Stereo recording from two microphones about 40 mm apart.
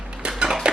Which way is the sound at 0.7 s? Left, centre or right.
Right.